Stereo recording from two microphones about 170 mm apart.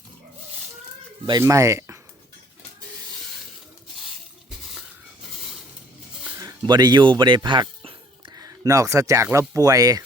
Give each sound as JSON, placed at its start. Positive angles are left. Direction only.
{"t": 1.3, "sound": "speech", "side_deg": -20}
{"t": 6.3, "sound": "speech", "side_deg": -20}